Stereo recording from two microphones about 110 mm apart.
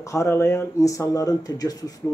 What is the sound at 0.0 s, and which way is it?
Speech, 25° left (ahead or behind).